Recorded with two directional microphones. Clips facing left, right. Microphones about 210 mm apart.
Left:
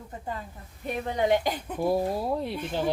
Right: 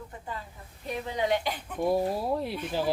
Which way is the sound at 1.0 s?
50° left (ahead or behind).